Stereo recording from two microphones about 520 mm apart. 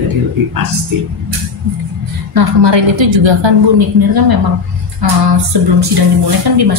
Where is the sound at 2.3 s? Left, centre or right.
Right.